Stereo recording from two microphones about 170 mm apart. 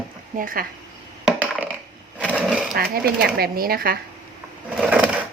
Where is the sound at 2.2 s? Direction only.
5° left (ahead or behind).